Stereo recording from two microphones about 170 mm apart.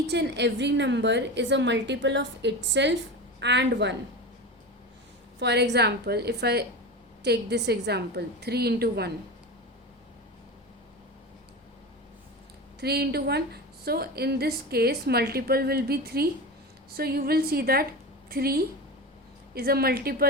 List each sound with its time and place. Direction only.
0.1 s a woman's voice: 90° right
5.4 s a woman's voice: 85° right; by 9.1 s 70° right (ahead or behind)
12.8 s a woman's voice: 70° right (ahead or behind)